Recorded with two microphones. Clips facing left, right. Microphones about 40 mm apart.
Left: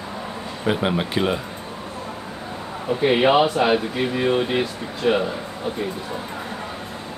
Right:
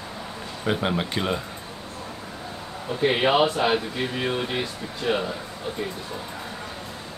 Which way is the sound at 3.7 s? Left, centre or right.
Centre.